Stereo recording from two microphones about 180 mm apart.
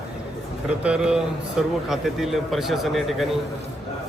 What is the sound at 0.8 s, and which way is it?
Speech, 5° right (ahead or behind).